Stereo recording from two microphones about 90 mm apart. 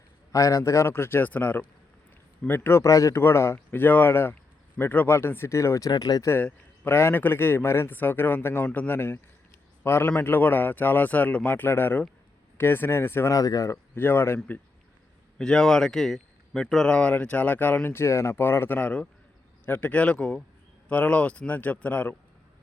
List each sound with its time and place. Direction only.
0.3 s a man's voice: 35° left (ahead or behind)
5.9 s speech: 45° left (ahead or behind)
6.2 s a man's voice: 25° left (ahead or behind)
13.3 s speech: 40° left (ahead or behind)
13.9 s a man's voice: 25° left (ahead or behind)
15.4 s a man's voice: 5° left (ahead or behind)